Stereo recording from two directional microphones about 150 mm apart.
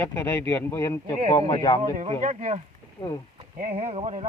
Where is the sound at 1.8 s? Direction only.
45° right (ahead or behind).